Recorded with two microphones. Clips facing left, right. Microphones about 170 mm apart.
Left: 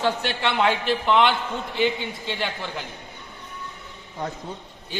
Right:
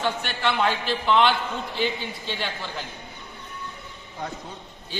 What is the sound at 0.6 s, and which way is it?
A man's voice, 15° left (ahead or behind).